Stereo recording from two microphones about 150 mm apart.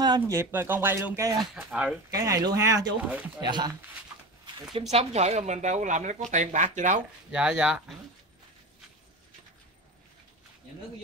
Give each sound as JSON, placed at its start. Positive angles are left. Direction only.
{"t": 0.0, "sound": "speech", "side_deg": -25}
{"t": 1.4, "sound": "speech", "side_deg": 0}
{"t": 2.0, "sound": "speech", "side_deg": -20}
{"t": 4.9, "sound": "a woman's voice", "side_deg": -45}
{"t": 7.2, "sound": "speech", "side_deg": -5}